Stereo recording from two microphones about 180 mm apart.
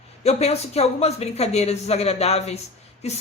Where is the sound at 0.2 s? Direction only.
35° left (ahead or behind).